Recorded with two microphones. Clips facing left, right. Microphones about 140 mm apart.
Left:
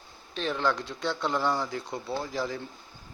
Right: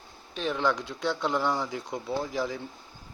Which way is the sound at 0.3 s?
10° right (ahead or behind).